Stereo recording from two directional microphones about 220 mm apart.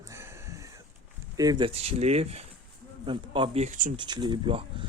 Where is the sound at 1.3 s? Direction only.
15° right (ahead or behind); by 3.9 s 35° right (ahead or behind).